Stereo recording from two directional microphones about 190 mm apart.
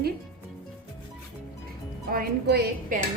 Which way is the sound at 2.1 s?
55° right (ahead or behind).